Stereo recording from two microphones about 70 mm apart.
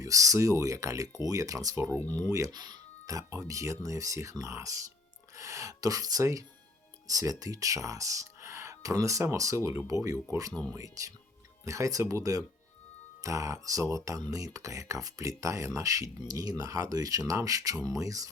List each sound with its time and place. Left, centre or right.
0.0 s speech: right
1.7 s speech: right
2.5 s speech: right
10.5 s speech: centre
10.8 s speech: right